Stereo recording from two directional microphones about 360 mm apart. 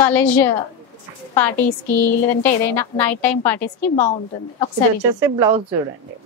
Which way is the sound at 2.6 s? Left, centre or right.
Centre.